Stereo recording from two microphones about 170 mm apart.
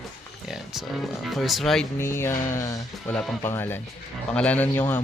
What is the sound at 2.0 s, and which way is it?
Speech, 15° left (ahead or behind).